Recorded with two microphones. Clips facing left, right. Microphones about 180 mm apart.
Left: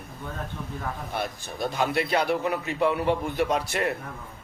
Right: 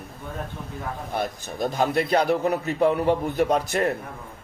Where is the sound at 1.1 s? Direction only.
45° right (ahead or behind).